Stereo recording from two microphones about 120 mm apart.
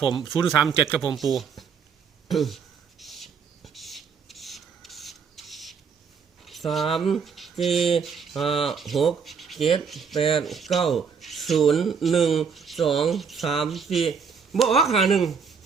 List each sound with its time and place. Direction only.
0.2 s speech: centre (ahead or behind)
3.0 s writing: centre (ahead or behind)
6.4 s speech: centre (ahead or behind)